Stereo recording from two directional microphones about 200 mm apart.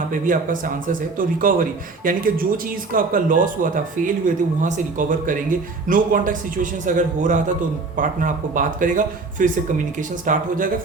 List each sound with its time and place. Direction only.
0.1 s speech: 40° right (ahead or behind)